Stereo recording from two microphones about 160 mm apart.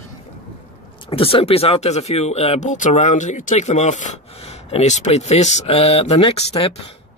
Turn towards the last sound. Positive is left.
turn(degrees=35)  # may be behind; listen again after turning